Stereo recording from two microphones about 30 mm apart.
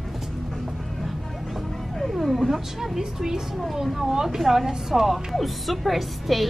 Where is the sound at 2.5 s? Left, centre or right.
Centre.